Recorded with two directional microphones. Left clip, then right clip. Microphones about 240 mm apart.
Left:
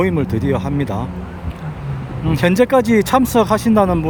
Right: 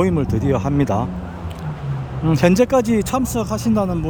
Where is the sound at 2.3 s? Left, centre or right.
Centre.